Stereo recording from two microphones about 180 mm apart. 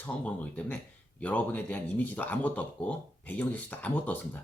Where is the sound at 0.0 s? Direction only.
10° left (ahead or behind).